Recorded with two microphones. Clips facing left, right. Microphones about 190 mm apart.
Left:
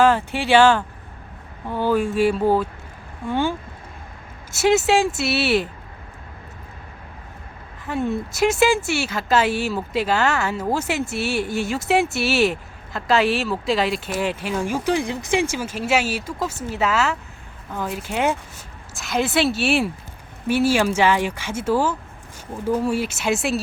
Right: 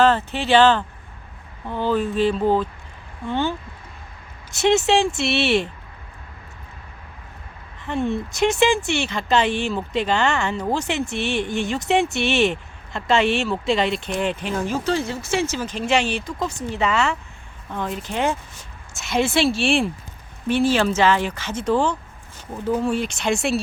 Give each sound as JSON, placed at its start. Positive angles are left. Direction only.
{"t": 0.0, "sound": "speech", "side_deg": 10}
{"t": 4.5, "sound": "speech", "side_deg": 5}
{"t": 7.9, "sound": "speech", "side_deg": 5}